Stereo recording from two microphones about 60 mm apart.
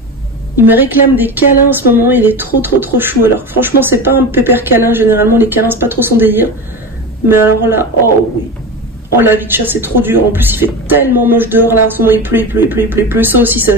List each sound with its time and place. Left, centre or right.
0.6 s speech: right
9.1 s speech: right